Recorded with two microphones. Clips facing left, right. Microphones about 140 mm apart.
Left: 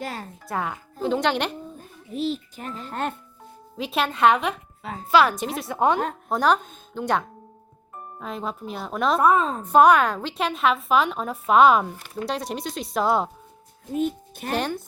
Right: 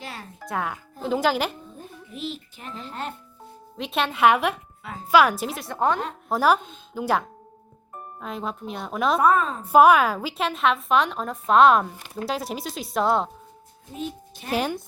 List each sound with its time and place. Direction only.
0.0 s speech: 45° left (ahead or behind)
0.4 s a woman's voice: centre (ahead or behind)
2.1 s a child's voice: 40° left (ahead or behind)
2.8 s speech: 50° left (ahead or behind)
3.8 s a woman's voice: centre (ahead or behind)
5.7 s a woman's voice: 15° left (ahead or behind)
6.2 s a woman's voice: 5° right (ahead or behind)
13.9 s a child's voice: 55° left (ahead or behind)
14.5 s a woman's voice: 5° right (ahead or behind)